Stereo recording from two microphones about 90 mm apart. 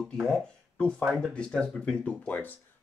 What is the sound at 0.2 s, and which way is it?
Speech, 10° left (ahead or behind).